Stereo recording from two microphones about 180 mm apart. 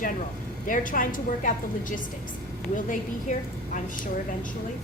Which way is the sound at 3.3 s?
45° left (ahead or behind).